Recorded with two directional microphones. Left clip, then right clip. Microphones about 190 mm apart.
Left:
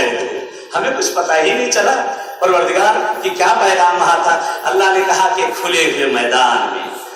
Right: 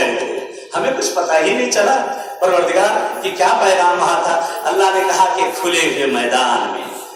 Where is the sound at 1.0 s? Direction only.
Centre (ahead or behind).